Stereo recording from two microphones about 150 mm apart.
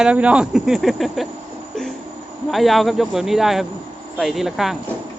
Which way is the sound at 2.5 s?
Centre (ahead or behind).